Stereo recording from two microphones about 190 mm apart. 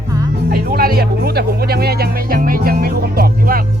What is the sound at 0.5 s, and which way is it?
Music, 50° right (ahead or behind).